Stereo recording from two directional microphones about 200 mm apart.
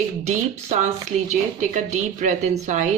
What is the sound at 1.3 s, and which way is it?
Speech, 35° right (ahead or behind).